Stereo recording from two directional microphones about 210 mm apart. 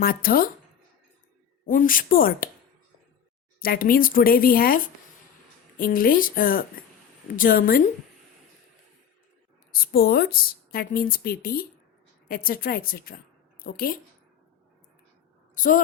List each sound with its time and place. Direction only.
0.0 s speech: 45° left (ahead or behind)
1.6 s speech: 40° left (ahead or behind)
3.6 s speech: 45° left (ahead or behind)
9.7 s a woman's voice: 45° left (ahead or behind)
15.5 s a woman's voice: 40° left (ahead or behind)